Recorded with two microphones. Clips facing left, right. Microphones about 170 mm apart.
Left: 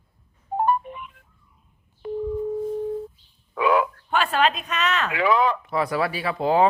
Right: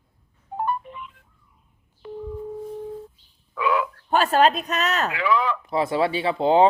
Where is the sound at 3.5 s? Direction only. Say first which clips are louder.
Left 3 dB; 35° left (ahead or behind).